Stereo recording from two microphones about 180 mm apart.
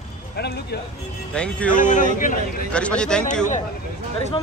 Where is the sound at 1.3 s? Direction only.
5° left (ahead or behind).